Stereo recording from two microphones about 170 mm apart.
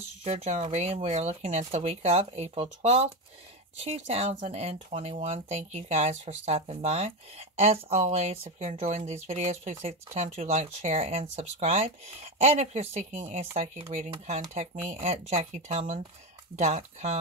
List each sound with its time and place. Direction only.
0.2 s speech: 35° right (ahead or behind)